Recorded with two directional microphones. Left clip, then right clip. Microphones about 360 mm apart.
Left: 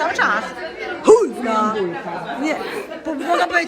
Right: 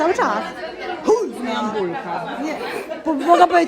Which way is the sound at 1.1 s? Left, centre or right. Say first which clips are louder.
Left 6 dB; centre.